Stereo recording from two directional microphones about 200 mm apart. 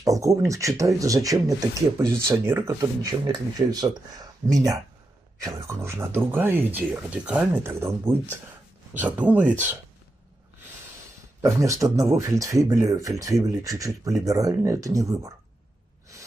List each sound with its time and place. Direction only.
0.0 s speech: 15° right (ahead or behind)
11.4 s speech: 15° right (ahead or behind)